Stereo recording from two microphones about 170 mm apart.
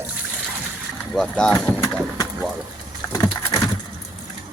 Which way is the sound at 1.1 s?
5° left (ahead or behind).